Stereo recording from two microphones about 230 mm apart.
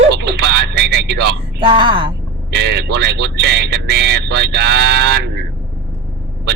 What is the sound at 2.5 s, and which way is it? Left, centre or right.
Speech, right.